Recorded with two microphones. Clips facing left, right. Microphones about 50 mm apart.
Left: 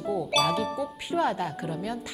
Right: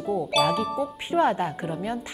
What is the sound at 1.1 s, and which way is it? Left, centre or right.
Speech, right.